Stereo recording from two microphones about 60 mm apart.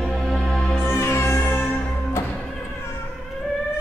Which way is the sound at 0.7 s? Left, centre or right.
Left.